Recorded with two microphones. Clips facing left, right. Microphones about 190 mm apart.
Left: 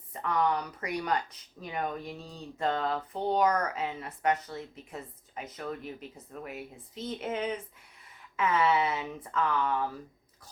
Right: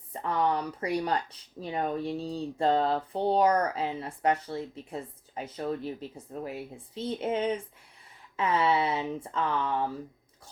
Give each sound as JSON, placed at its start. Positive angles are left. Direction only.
{"t": 0.1, "sound": "speech", "side_deg": -30}